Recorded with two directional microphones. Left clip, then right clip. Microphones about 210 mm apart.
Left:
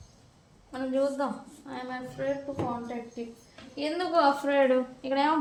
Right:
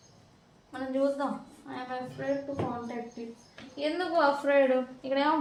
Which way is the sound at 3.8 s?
35° left (ahead or behind).